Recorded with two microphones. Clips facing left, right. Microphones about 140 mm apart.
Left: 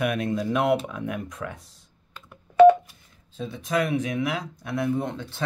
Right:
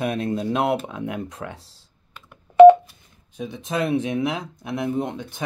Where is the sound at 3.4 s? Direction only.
20° right (ahead or behind).